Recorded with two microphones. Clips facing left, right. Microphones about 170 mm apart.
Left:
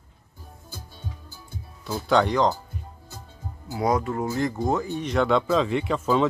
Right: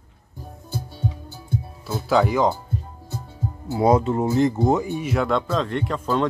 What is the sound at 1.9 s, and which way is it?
Speech, 5° right (ahead or behind).